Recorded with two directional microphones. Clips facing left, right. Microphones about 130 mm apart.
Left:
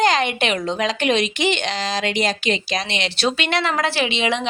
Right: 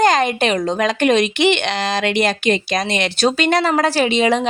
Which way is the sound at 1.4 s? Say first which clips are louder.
Right 5 dB; 65° right (ahead or behind).